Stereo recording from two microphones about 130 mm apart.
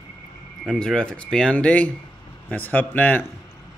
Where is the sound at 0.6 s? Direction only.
5° left (ahead or behind).